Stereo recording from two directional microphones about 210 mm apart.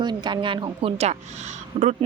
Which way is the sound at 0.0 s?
20° right (ahead or behind).